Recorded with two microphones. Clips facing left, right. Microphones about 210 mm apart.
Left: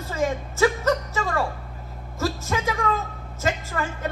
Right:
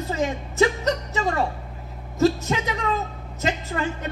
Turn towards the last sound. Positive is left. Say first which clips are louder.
# right 2 dB
turn(degrees=-20)  # may be behind; listen again after turning